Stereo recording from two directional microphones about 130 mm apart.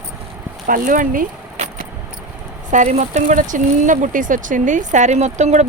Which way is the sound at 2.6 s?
70° right (ahead or behind).